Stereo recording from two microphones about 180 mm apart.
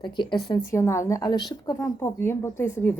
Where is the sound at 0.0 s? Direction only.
25° left (ahead or behind).